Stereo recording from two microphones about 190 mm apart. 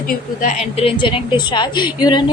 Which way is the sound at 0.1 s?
35° left (ahead or behind).